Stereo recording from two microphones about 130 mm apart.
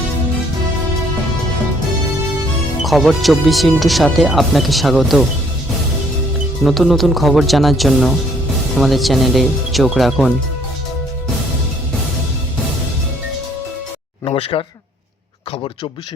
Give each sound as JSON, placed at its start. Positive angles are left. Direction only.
{"t": 2.8, "sound": "speech", "side_deg": 0}
{"t": 6.7, "sound": "speech", "side_deg": 0}
{"t": 14.3, "sound": "a sound", "side_deg": 45}